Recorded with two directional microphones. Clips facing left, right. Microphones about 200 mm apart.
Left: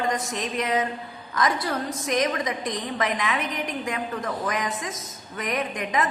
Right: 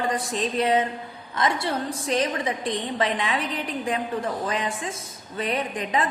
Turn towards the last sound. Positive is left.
turn(degrees=-30)  # may be behind; listen again after turning